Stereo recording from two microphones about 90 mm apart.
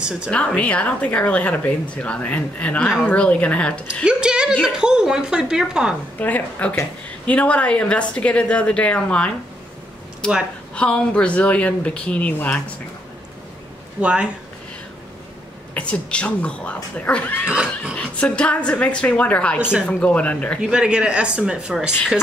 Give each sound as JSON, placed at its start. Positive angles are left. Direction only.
{"t": 0.0, "sound": "a woman's voice", "side_deg": -10}
{"t": 0.6, "sound": "speech", "side_deg": 15}
{"t": 4.0, "sound": "speech", "side_deg": -10}
{"t": 6.1, "sound": "speech", "side_deg": 20}
{"t": 14.0, "sound": "speech", "side_deg": -10}
{"t": 15.7, "sound": "speech", "side_deg": 15}
{"t": 17.5, "sound": "speech", "side_deg": -10}
{"t": 17.9, "sound": "speech", "side_deg": 15}
{"t": 20.6, "sound": "speech", "side_deg": -10}